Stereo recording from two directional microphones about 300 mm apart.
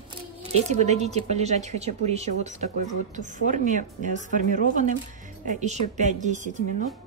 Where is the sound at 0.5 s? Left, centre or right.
Right.